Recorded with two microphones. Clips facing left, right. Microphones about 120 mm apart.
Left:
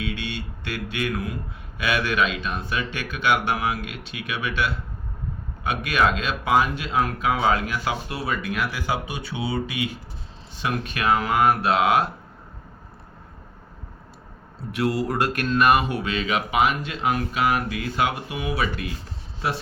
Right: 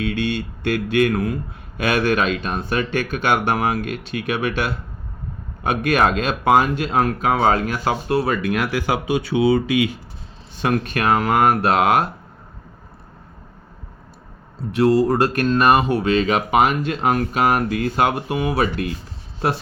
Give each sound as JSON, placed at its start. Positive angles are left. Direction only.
{"t": 0.0, "sound": "speech", "side_deg": -50}
{"t": 10.6, "sound": "speech", "side_deg": -50}
{"t": 14.7, "sound": "speech", "side_deg": -30}